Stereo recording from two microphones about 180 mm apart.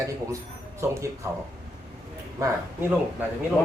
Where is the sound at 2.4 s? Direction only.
10° right (ahead or behind).